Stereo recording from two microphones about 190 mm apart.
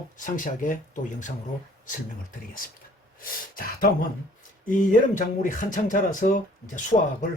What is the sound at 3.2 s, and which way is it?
Speech, 45° left (ahead or behind).